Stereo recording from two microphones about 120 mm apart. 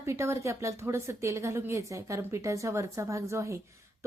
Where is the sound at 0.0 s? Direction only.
25° right (ahead or behind).